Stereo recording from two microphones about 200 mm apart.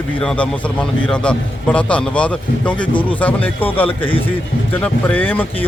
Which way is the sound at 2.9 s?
25° left (ahead or behind).